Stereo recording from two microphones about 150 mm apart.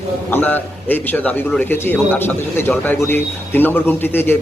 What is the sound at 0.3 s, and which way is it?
A man's voice, 10° left (ahead or behind).